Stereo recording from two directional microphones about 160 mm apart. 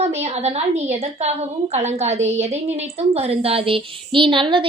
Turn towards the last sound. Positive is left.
turn(degrees=-30)  # may be behind; listen again after turning